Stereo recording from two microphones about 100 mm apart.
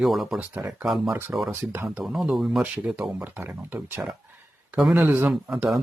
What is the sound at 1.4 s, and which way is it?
Speech, 25° right (ahead or behind).